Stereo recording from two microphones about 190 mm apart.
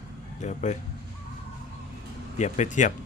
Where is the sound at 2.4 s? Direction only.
40° left (ahead or behind).